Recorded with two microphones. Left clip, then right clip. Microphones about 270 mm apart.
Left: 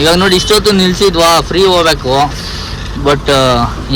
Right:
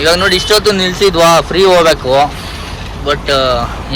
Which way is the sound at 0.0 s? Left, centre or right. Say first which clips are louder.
Left 1 dB; centre.